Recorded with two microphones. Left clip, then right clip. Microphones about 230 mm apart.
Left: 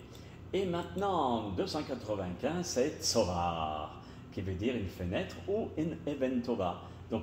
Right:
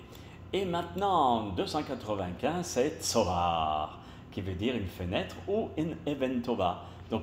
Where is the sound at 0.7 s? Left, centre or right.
Right.